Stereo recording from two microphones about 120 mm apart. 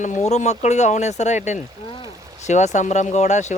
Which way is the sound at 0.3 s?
70° left (ahead or behind).